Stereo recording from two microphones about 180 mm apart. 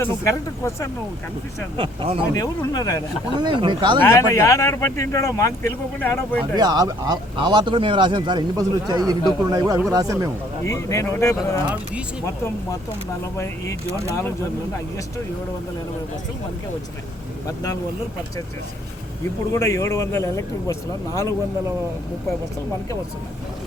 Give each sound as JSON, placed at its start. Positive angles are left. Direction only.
{"t": 0.0, "sound": "speech", "side_deg": 15}
{"t": 1.7, "sound": "speech", "side_deg": -30}
{"t": 2.3, "sound": "speech", "side_deg": 20}
{"t": 3.4, "sound": "speech", "side_deg": -25}
{"t": 4.0, "sound": "speech", "side_deg": 15}
{"t": 6.4, "sound": "speech", "side_deg": -20}
{"t": 10.7, "sound": "speech", "side_deg": 15}
{"t": 13.3, "sound": "speech", "side_deg": 15}
{"t": 17.4, "sound": "speech", "side_deg": 20}
{"t": 19.5, "sound": "speech", "side_deg": 15}